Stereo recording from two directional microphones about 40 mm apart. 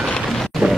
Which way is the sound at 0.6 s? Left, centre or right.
Centre.